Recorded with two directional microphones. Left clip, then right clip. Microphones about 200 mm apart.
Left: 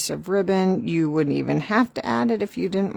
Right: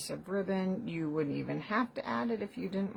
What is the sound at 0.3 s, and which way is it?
Speech, 60° left (ahead or behind).